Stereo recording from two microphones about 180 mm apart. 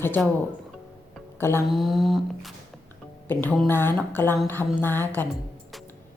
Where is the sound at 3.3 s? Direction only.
10° left (ahead or behind).